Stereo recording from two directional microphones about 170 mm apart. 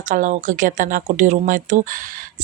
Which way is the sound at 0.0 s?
50° right (ahead or behind).